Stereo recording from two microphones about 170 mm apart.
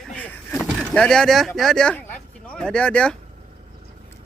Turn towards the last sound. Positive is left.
turn(degrees=5)  # may be behind; listen again after turning